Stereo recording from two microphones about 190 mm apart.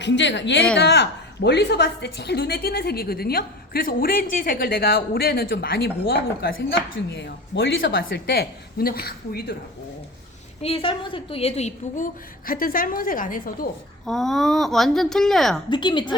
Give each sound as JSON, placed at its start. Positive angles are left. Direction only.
{"t": 0.0, "sound": "a woman's voice", "side_deg": 70}
{"t": 6.9, "sound": "speech", "side_deg": 65}
{"t": 7.9, "sound": "a woman's voice", "side_deg": 55}
{"t": 10.6, "sound": "a woman's voice", "side_deg": 30}
{"t": 14.0, "sound": "a woman's voice", "side_deg": 0}
{"t": 15.7, "sound": "a woman's voice", "side_deg": 25}